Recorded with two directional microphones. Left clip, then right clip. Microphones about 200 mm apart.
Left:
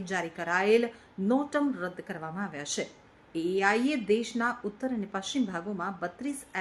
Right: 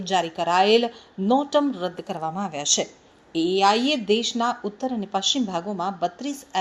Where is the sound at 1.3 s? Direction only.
15° right (ahead or behind).